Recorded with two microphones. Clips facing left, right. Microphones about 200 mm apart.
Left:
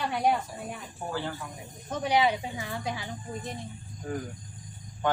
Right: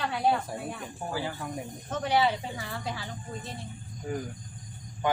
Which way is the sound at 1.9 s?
10° left (ahead or behind).